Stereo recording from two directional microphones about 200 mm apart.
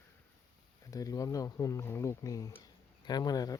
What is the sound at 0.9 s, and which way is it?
Speech, 15° left (ahead or behind).